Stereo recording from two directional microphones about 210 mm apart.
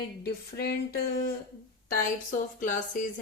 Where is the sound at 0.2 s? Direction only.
50° left (ahead or behind).